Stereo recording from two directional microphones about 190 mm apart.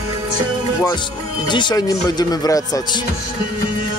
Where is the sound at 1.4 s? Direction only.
25° left (ahead or behind).